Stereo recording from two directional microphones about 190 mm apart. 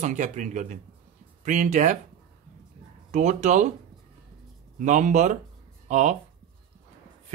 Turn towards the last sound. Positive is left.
turn(degrees=-40)  # may be behind; listen again after turning